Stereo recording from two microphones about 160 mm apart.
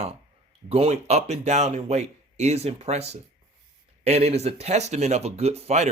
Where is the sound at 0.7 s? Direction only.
40° right (ahead or behind).